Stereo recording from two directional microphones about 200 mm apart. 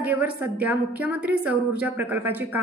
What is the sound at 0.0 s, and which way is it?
A woman's voice, 10° right (ahead or behind).